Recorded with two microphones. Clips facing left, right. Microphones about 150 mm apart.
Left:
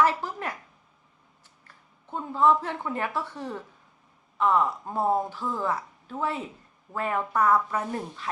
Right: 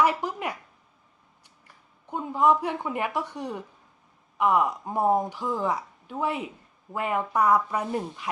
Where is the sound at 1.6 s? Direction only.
15° right (ahead or behind).